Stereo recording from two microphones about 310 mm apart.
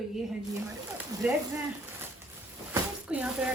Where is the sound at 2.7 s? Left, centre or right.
Centre.